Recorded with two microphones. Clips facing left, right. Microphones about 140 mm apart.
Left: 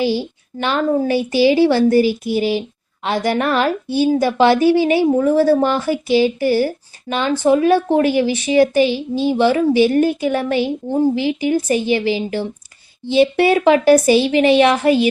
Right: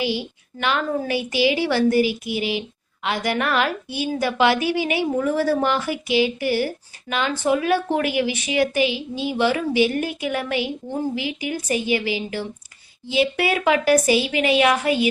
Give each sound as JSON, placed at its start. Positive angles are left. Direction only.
{"t": 0.0, "sound": "a woman's voice", "side_deg": 35}